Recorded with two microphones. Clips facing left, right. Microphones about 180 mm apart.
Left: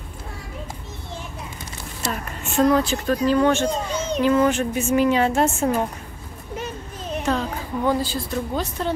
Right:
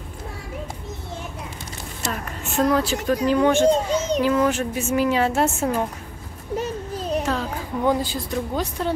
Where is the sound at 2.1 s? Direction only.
Centre (ahead or behind).